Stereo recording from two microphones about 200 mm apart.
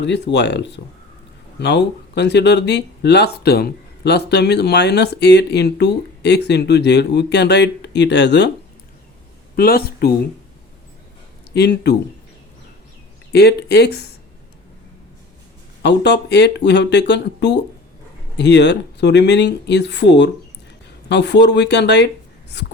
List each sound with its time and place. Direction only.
0.0 s speech: 60° left (ahead or behind)
9.6 s speech: 50° left (ahead or behind)
11.5 s speech: 55° left (ahead or behind)
13.3 s speech: 55° left (ahead or behind)
15.8 s speech: 55° left (ahead or behind)